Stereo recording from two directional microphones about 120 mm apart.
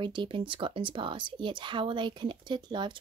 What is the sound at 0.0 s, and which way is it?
Speech, 40° right (ahead or behind).